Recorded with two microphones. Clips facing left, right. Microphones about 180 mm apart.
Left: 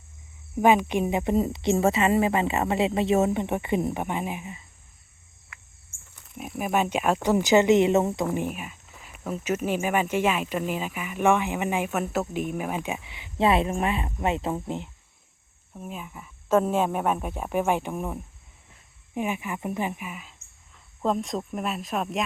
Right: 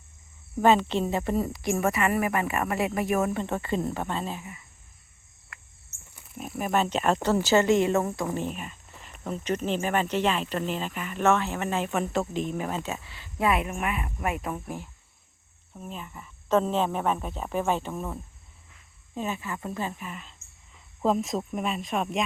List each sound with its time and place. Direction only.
0.5 s a woman's voice: 15° left (ahead or behind)
5.5 s cricket: centre (ahead or behind)
6.3 s speech: 5° left (ahead or behind); by 14.8 s 25° left (ahead or behind)
15.7 s speech: 5° left (ahead or behind)
20.7 s speech: 5° right (ahead or behind)